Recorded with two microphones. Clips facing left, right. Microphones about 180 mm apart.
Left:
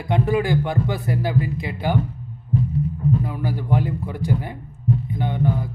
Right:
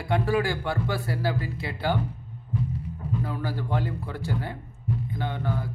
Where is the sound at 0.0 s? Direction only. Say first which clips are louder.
Left 4 dB; 20° left (ahead or behind).